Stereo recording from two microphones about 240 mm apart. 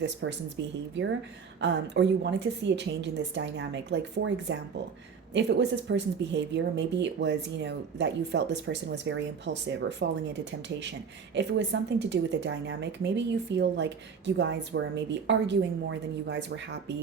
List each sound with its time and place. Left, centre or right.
0.0 s a woman's voice: right
11.3 s a woman's voice: right